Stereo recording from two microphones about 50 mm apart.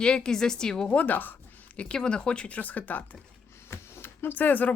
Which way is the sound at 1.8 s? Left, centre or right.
Centre.